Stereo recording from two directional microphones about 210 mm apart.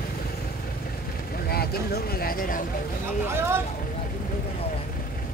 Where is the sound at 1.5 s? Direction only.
45° left (ahead or behind).